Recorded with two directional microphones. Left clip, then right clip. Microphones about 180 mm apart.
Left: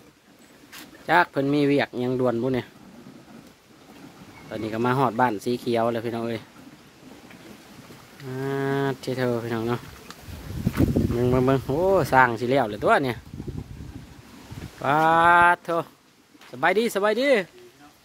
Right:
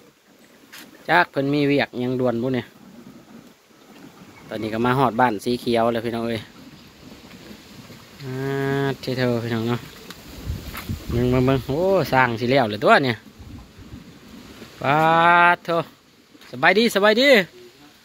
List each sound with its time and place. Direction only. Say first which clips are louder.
1.0 s speech: right 2 dB; 15° left (ahead or behind)
4.5 s speech: right 3 dB; 5° left (ahead or behind)
8.3 s speech: right 2 dB; 15° left (ahead or behind)
11.1 s speech: right 3 dB; 20° left (ahead or behind)
14.8 s speech: right 2 dB; 15° left (ahead or behind)